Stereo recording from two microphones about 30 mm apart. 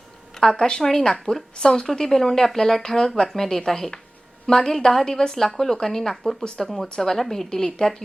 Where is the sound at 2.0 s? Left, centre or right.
Centre.